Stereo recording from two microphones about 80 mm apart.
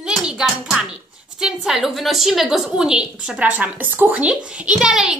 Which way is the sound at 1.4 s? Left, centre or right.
Centre.